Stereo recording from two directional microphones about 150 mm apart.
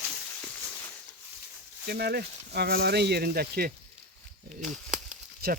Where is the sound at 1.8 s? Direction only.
90° right.